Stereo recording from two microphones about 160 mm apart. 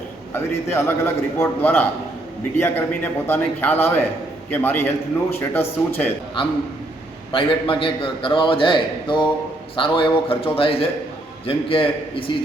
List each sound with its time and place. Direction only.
0.3 s a man's voice: 15° left (ahead or behind)
7.3 s a man's voice: 35° left (ahead or behind)